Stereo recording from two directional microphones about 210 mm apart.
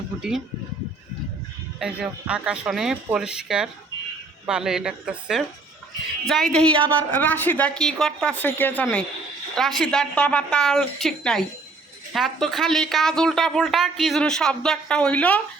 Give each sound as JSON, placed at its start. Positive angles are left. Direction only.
{"t": 0.2, "sound": "speech", "side_deg": 0}
{"t": 1.8, "sound": "speech", "side_deg": -5}
{"t": 6.7, "sound": "a woman's voice", "side_deg": -25}
{"t": 7.1, "sound": "speech", "side_deg": 10}